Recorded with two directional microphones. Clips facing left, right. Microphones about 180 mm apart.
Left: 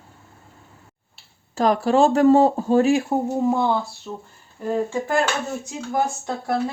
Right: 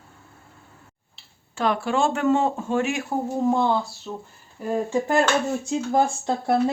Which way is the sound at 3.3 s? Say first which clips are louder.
Right 1 dB; 5° left (ahead or behind).